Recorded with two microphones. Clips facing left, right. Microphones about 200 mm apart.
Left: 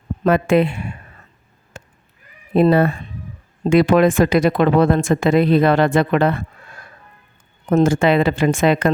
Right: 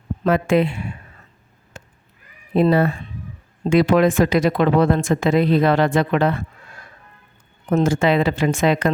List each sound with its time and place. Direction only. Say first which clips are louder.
0.3 s speech: left 2 dB; 55° left (ahead or behind)
2.6 s speech: left 2 dB; 55° left (ahead or behind)
7.7 s speech: left 3 dB; 50° left (ahead or behind)